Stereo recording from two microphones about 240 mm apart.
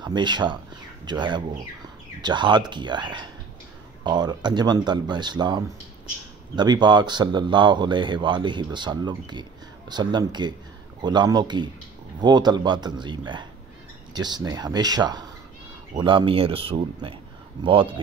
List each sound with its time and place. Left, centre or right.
0.0 s speech: centre